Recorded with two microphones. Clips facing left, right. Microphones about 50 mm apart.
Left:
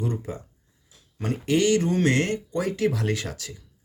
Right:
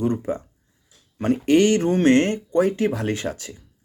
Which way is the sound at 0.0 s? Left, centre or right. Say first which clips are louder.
Right 7 dB; right.